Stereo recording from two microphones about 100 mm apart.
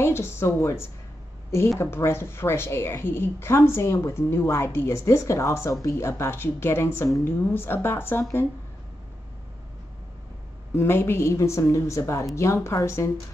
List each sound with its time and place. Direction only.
0.0 s a woman's voice: 25° left (ahead or behind)
10.8 s a woman's voice: 25° left (ahead or behind)